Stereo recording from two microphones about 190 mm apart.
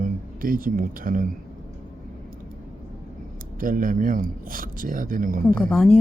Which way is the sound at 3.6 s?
45° right (ahead or behind).